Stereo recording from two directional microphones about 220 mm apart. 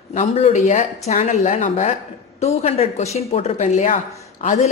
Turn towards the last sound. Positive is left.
turn(degrees=30)  # may be behind; listen again after turning